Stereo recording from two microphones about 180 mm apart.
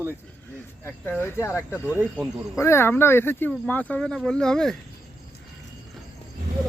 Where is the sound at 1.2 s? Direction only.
15° left (ahead or behind).